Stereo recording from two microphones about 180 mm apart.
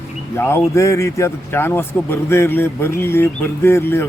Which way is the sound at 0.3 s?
15° left (ahead or behind).